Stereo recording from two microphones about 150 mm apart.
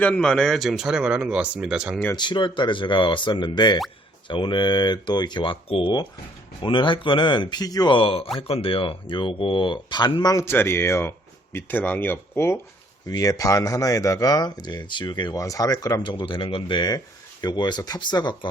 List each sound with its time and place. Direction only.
0.0 s speech: 5° left (ahead or behind)
2.1 s speech: 30° left (ahead or behind)
10.3 s speech: 15° left (ahead or behind)